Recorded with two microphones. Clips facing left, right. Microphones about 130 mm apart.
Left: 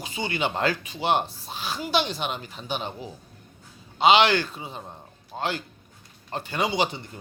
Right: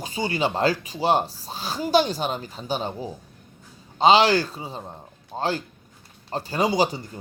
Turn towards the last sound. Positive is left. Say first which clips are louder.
# right 4 dB
turn(degrees=-40)  # may be behind; listen again after turning